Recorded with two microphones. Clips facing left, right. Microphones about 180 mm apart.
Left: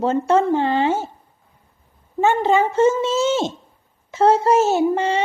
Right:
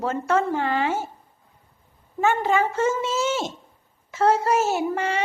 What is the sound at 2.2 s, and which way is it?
Speech, 25° left (ahead or behind).